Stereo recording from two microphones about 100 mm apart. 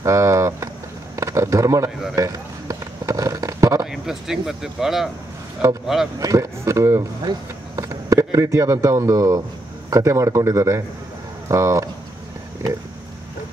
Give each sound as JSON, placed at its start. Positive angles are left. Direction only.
{"t": 0.0, "sound": "speech", "side_deg": -30}
{"t": 1.1, "sound": "a sound", "side_deg": -30}
{"t": 3.8, "sound": "speech", "side_deg": -5}
{"t": 6.1, "sound": "speech", "side_deg": -35}